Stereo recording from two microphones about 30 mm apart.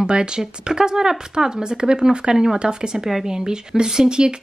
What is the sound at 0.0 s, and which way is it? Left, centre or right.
Speech, right.